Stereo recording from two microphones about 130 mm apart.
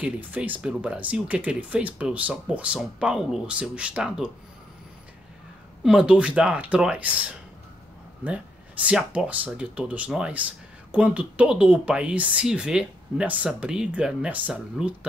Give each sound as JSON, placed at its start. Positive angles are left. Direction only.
{"t": 0.0, "sound": "speech", "side_deg": -10}
{"t": 5.9, "sound": "speech", "side_deg": -5}
{"t": 8.8, "sound": "speech", "side_deg": -10}